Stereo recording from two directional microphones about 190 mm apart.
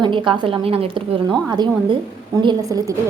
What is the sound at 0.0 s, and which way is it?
A woman's voice, 25° right (ahead or behind).